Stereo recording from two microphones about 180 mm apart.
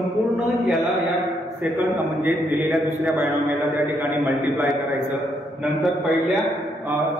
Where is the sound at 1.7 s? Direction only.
15° right (ahead or behind).